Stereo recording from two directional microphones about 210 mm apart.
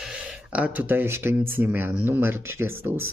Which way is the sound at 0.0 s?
5° right (ahead or behind).